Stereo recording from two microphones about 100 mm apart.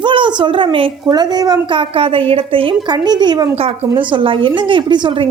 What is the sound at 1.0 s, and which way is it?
Speech, 40° right (ahead or behind).